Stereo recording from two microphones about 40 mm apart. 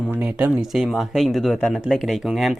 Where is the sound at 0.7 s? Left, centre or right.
Centre.